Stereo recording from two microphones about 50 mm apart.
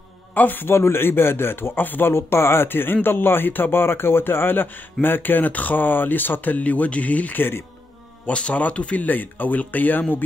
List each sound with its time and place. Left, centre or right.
0.3 s a man's voice: left
0.7 s a man's voice: left